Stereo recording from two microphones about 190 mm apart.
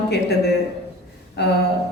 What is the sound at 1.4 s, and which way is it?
Speech, 65° left (ahead or behind).